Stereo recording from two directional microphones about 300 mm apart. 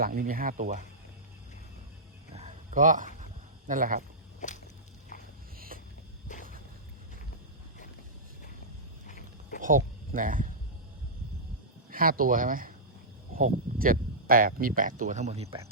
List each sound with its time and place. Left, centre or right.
0.0 s speech: right
2.3 s a sound: right
3.7 s speech: right
4.4 s a sound: left
5.5 s music: right
9.0 s sheep: left
9.6 s speech: right
11.9 s speech: right
13.7 s speech: right